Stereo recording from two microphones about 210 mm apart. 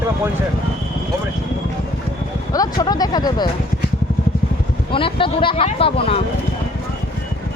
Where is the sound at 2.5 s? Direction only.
20° left (ahead or behind).